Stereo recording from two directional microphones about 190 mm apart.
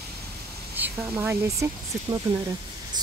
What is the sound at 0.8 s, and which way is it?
Speech, 10° right (ahead or behind).